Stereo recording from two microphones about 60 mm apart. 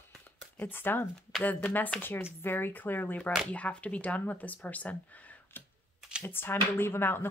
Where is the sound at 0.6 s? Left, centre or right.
Left.